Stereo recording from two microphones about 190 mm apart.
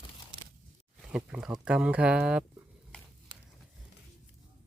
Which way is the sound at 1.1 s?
5° right (ahead or behind).